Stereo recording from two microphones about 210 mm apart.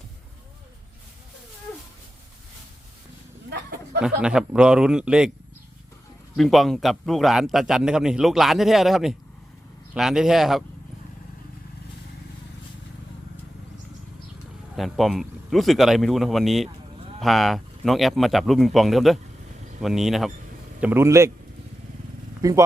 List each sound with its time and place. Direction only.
4.0 s a man's voice: 5° right (ahead or behind)
6.3 s a man's voice: centre (ahead or behind)
14.8 s a man's voice: centre (ahead or behind)
20.8 s a man's voice: 10° right (ahead or behind)
22.4 s speech: 15° right (ahead or behind)